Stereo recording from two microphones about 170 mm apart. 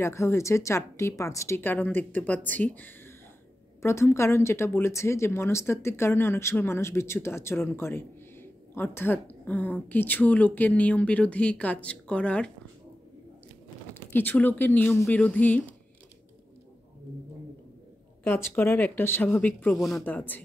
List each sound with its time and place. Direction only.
0.0 s speech: 15° left (ahead or behind)
13.9 s speech: 10° left (ahead or behind)
18.2 s speech: 10° left (ahead or behind)